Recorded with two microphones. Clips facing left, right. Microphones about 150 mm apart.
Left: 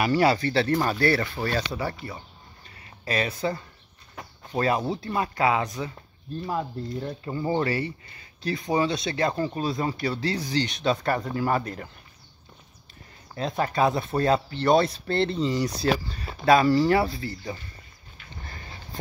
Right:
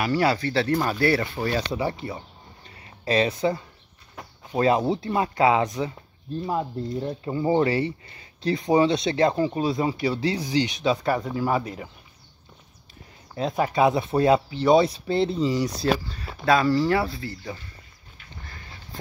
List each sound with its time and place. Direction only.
0.0 s speech: centre (ahead or behind)
13.3 s speech: 10° right (ahead or behind)
16.4 s speech: 15° left (ahead or behind)
16.7 s speech: centre (ahead or behind)